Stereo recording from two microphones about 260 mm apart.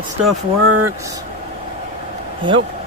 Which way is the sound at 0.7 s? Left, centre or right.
Right.